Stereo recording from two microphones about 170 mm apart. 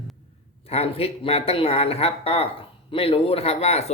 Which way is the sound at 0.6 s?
35° left (ahead or behind).